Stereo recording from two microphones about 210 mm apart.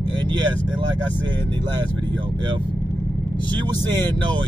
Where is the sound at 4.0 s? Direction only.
20° right (ahead or behind).